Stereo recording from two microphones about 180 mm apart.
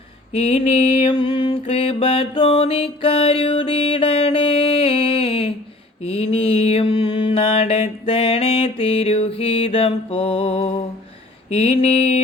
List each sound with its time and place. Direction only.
0.3 s mantra: 35° left (ahead or behind)